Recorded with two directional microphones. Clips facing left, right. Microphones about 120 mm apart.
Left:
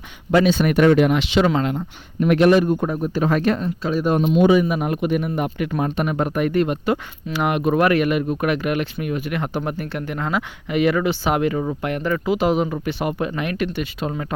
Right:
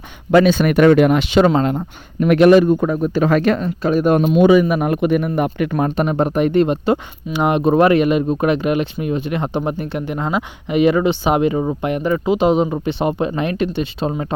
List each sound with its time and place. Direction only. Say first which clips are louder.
0.3 s a man's voice: right 4 dB; 60° right (ahead or behind)
1.1 s speech: right 4 dB; 45° right (ahead or behind)
2.2 s a man's voice: right 5 dB; 80° right; by 5.9 s 55° right (ahead or behind)
6.0 s speech: right 5 dB; 30° right (ahead or behind)